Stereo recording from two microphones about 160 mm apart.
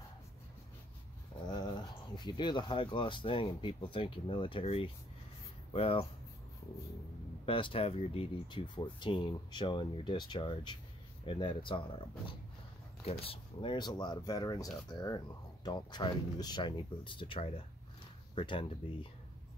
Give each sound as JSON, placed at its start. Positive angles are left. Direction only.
{"t": 1.4, "sound": "speech", "side_deg": 25}
{"t": 7.4, "sound": "speech", "side_deg": 35}